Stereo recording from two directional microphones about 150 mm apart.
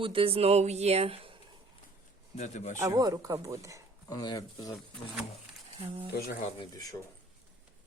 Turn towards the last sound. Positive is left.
turn(degrees=25)  # may be behind; listen again after turning